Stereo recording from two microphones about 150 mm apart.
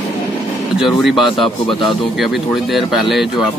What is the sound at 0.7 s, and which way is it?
Speech, 5° right (ahead or behind).